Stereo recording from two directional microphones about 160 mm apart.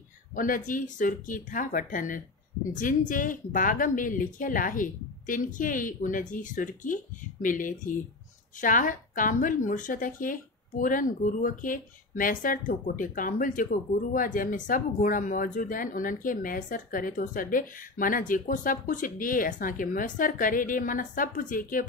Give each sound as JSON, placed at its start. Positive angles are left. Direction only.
{"t": 0.4, "sound": "speech", "side_deg": 55}